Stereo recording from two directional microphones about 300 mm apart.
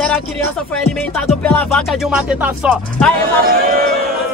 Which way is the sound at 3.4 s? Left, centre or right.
Right.